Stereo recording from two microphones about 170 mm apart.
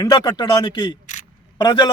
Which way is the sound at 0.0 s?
25° left (ahead or behind).